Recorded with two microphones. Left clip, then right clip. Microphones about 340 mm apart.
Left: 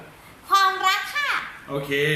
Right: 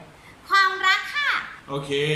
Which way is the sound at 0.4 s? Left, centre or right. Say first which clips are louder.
Even; centre.